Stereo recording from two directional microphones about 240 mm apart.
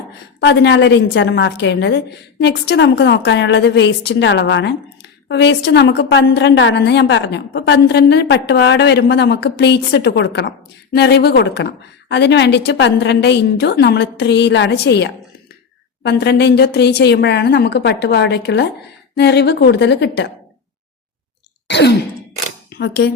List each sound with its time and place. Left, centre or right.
0.3 s a woman's voice: left
21.7 s sigh: left
22.7 s speech: left